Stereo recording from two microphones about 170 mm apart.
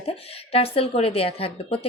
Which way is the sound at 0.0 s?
35° left (ahead or behind).